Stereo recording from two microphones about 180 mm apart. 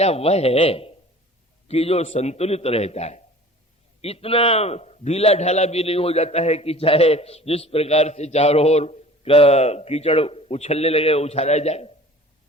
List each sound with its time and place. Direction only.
0.0 s a man's voice: 35° left (ahead or behind)